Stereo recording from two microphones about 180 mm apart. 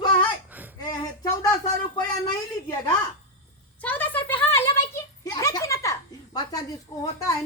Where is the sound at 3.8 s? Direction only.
10° left (ahead or behind).